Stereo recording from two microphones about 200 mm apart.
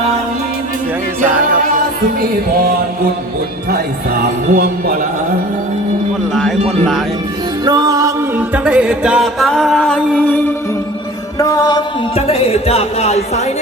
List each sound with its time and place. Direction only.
3.7 s speech: 50° right (ahead or behind)
6.7 s music: centre (ahead or behind)
7.6 s music: 20° right (ahead or behind); by 11.8 s 15° left (ahead or behind)
12.1 s speech: 30° left (ahead or behind)